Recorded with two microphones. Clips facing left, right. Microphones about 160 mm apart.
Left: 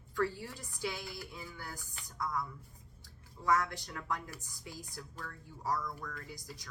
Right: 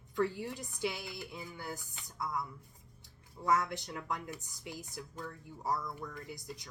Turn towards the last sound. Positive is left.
turn(degrees=-20)  # may be behind; listen again after turning